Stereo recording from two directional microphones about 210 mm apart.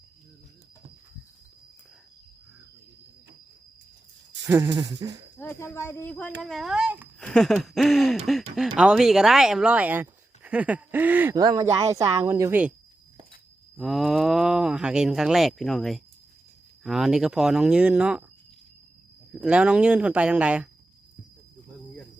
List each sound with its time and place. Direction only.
4.4 s speech: 15° right (ahead or behind)
5.4 s speech: 10° left (ahead or behind); by 7.1 s 5° right (ahead or behind)
7.2 s speech: 5° left (ahead or behind)
13.7 s speech: centre (ahead or behind)
19.3 s speech: 5° right (ahead or behind)